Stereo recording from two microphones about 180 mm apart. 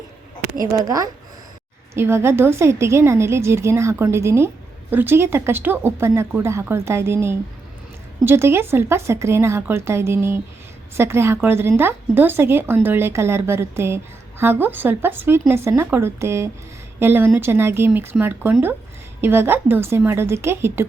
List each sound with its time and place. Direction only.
0.9 s a woman's voice: 20° right (ahead or behind)